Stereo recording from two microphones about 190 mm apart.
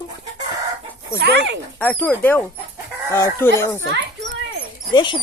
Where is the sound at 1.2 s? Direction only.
60° right (ahead or behind).